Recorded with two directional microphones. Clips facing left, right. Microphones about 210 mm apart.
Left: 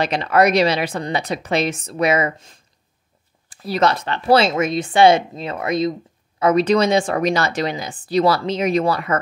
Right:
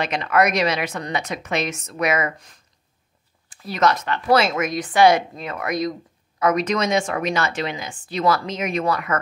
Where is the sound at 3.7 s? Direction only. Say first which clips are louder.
Left 2 dB; 30° left (ahead or behind).